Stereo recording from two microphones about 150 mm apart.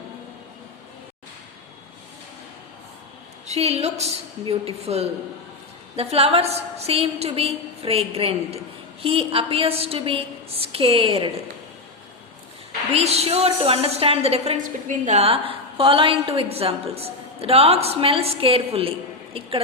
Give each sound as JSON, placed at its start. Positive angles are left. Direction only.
{"t": 3.4, "sound": "a woman's voice", "side_deg": -45}
{"t": 12.9, "sound": "a woman's voice", "side_deg": -45}